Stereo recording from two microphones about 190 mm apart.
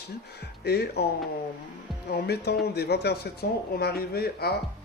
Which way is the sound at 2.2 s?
60° left (ahead or behind).